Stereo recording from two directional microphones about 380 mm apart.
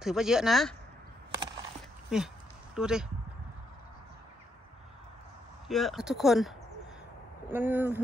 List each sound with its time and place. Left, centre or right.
0.0 s speech: centre
1.6 s a sound: centre
2.7 s speech: centre
5.7 s speech: centre